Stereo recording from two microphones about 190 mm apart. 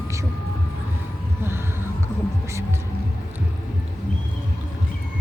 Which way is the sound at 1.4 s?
10° right (ahead or behind).